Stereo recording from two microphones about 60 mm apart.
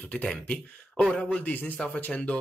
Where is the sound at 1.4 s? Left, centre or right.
Left.